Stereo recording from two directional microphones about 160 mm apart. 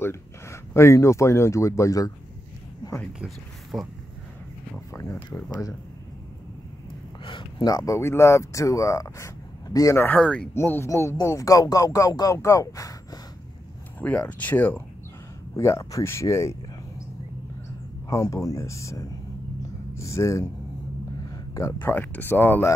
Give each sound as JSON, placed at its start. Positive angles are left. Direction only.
{"t": 0.0, "sound": "speech", "side_deg": 15}
{"t": 3.0, "sound": "speech", "side_deg": -5}
{"t": 4.9, "sound": "speech", "side_deg": 20}
{"t": 7.2, "sound": "speech", "side_deg": 30}
{"t": 14.0, "sound": "speech", "side_deg": 10}
{"t": 18.1, "sound": "speech", "side_deg": 20}
{"t": 21.5, "sound": "speech", "side_deg": 15}